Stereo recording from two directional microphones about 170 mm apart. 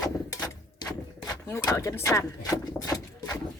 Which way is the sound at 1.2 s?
20° left (ahead or behind).